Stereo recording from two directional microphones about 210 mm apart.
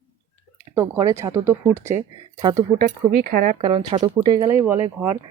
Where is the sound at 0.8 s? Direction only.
15° right (ahead or behind).